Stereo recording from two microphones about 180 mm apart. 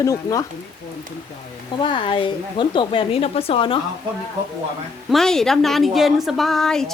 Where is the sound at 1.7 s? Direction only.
25° left (ahead or behind).